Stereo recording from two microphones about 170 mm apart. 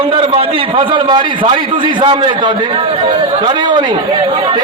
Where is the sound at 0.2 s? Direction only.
30° right (ahead or behind).